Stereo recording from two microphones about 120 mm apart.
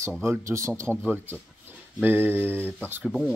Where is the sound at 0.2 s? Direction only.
20° right (ahead or behind).